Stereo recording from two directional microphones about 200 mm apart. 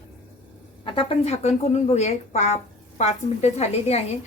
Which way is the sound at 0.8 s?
30° left (ahead or behind).